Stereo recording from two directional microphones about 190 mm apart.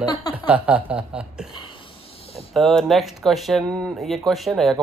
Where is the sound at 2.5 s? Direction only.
Centre (ahead or behind).